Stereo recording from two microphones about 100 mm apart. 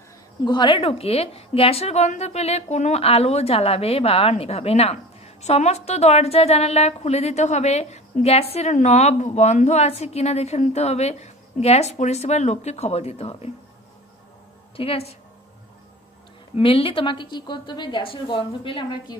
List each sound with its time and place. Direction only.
0.5 s a woman's voice: 50° left (ahead or behind)
0.8 s a woman's voice: 80° left
14.8 s a woman's voice: 80° left
16.5 s a woman's voice: 70° left (ahead or behind); by 19.1 s 55° left (ahead or behind)